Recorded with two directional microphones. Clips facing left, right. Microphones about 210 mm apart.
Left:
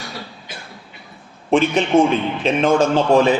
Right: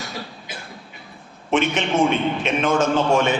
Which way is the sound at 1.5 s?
35° left (ahead or behind).